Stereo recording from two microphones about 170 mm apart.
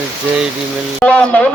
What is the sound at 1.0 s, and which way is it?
Speech, 10° left (ahead or behind).